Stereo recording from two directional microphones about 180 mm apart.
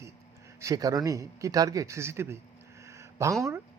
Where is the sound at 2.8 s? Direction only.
15° right (ahead or behind).